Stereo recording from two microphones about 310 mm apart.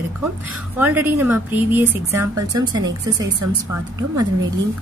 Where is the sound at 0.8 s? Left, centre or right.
Centre.